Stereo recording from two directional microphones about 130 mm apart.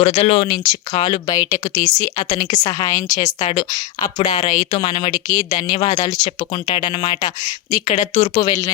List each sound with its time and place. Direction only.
0.0 s a woman's voice: 50° left (ahead or behind)